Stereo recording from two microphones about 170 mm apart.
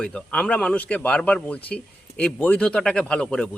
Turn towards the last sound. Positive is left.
turn(degrees=5)  # may be behind; listen again after turning